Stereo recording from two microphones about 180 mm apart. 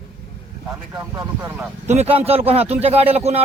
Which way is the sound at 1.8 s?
35° right (ahead or behind).